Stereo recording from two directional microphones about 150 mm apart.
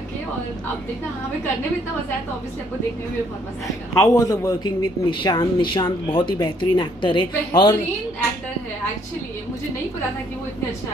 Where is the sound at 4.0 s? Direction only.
20° left (ahead or behind).